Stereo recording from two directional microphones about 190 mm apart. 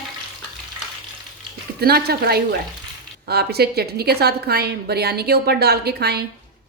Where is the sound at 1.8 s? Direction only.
55° right (ahead or behind).